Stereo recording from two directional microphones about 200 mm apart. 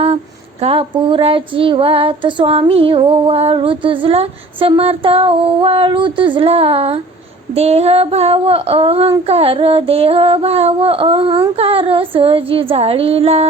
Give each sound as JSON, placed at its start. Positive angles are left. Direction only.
{"t": 0.6, "sound": "mantra", "side_deg": -30}